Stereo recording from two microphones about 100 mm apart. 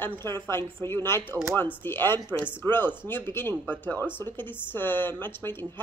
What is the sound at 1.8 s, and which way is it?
Speech, 20° left (ahead or behind).